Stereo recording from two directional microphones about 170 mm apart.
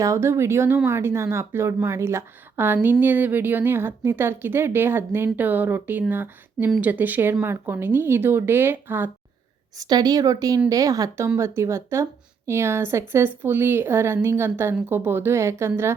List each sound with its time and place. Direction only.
0.0 s a woman's voice: 15° right (ahead or behind)